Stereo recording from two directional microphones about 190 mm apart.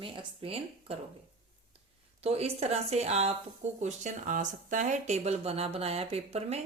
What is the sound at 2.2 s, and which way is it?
Speech, 35° right (ahead or behind).